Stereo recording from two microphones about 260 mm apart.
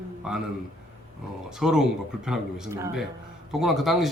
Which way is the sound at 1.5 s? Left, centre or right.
Centre.